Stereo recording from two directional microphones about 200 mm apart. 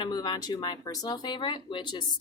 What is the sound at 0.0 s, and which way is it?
Speech, 20° left (ahead or behind).